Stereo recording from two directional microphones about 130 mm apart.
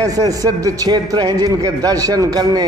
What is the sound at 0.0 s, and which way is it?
A man's voice, 25° right (ahead or behind).